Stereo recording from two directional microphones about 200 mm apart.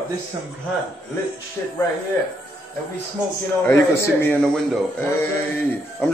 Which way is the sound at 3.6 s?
10° left (ahead or behind).